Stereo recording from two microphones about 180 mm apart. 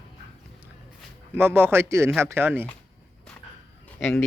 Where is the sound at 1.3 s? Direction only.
10° right (ahead or behind).